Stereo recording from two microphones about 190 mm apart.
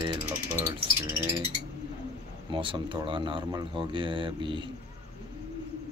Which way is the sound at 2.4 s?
25° right (ahead or behind).